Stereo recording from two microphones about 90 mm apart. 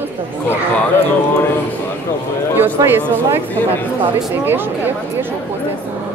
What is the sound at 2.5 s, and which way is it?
Speech, 20° right (ahead or behind).